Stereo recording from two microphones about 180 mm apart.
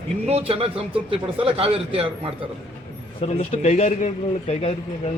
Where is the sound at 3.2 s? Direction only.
35° left (ahead or behind).